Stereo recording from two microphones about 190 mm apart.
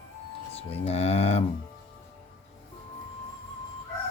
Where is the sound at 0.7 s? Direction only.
35° left (ahead or behind).